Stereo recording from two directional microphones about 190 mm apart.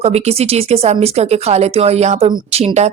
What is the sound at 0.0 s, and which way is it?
Speech, 35° right (ahead or behind).